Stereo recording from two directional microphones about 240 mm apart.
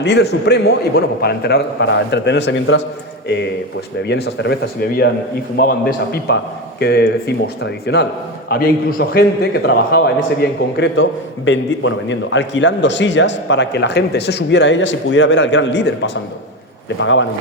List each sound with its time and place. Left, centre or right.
0.0 s a man's voice: left